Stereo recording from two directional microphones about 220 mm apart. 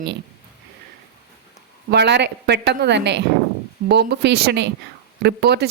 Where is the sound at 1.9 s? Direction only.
50° right (ahead or behind).